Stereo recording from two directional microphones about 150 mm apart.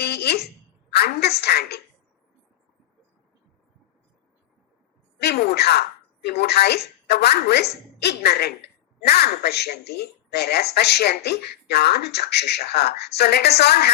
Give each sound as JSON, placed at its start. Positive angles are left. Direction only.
{"t": 0.0, "sound": "a sound", "side_deg": 90}
{"t": 0.9, "sound": "speech", "side_deg": 90}
{"t": 5.2, "sound": "speech", "side_deg": 90}